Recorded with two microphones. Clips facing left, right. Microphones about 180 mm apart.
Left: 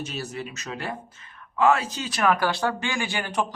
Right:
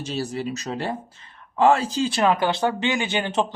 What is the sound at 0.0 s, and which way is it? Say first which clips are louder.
Speech: right 5 dB; 30° right (ahead or behind).